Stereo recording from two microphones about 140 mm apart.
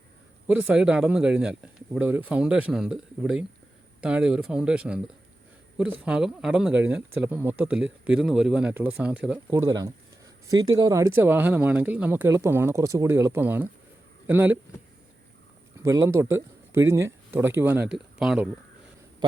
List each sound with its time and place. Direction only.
0.4 s speech: 10° right (ahead or behind)
9.5 s speech: 20° right (ahead or behind)
15.8 s speech: 25° right (ahead or behind)
17.9 s speech: 5° right (ahead or behind)